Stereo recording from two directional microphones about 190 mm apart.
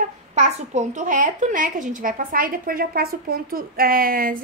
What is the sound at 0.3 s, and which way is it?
A child's voice, 40° right (ahead or behind).